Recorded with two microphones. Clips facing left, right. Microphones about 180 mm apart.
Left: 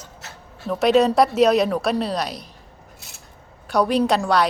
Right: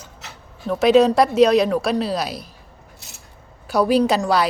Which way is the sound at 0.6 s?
Centre (ahead or behind).